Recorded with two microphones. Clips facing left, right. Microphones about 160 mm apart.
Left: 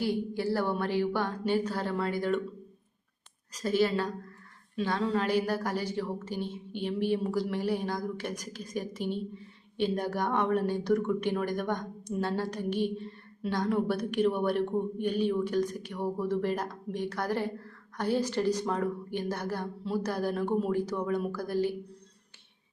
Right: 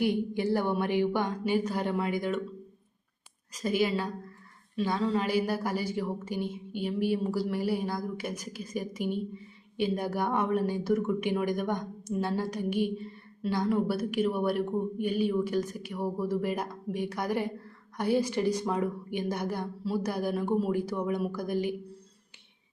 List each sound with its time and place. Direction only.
0.0 s speech: 20° right (ahead or behind)
3.5 s speech: 10° right (ahead or behind)